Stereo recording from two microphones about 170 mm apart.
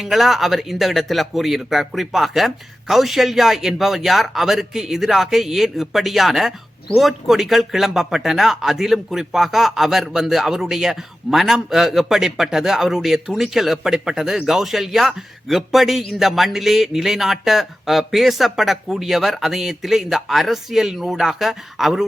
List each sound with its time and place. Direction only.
0.0 s speech: centre (ahead or behind)